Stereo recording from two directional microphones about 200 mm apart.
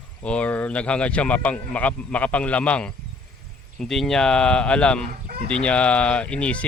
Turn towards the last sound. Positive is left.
turn(degrees=5)  # may be behind; listen again after turning